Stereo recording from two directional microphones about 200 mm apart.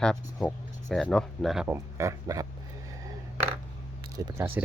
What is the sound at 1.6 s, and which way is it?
Speech, 15° right (ahead or behind).